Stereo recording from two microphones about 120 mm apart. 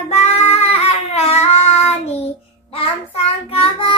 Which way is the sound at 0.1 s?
70° left (ahead or behind).